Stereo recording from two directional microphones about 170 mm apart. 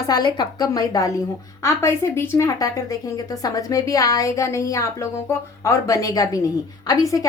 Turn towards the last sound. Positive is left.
turn(degrees=20)  # may be behind; listen again after turning